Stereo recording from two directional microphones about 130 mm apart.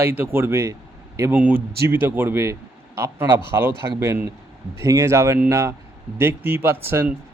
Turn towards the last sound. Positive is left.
turn(degrees=-15)  # may be behind; listen again after turning